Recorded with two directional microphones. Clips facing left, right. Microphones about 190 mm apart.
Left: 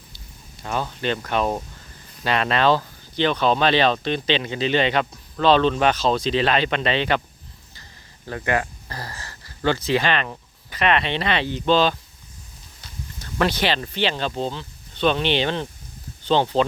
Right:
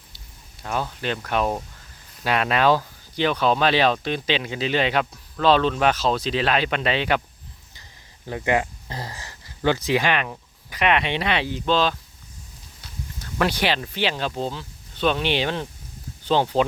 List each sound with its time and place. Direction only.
0.6 s speech: centre (ahead or behind)
8.3 s a sound: 15° right (ahead or behind)
9.6 s speech: 15° right (ahead or behind)